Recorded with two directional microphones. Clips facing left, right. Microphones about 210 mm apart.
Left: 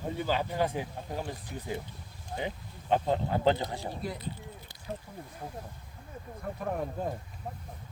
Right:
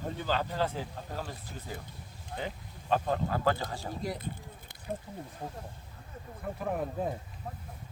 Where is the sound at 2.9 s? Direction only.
20° left (ahead or behind).